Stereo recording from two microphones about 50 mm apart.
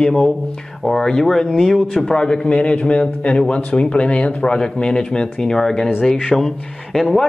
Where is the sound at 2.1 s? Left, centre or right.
Centre.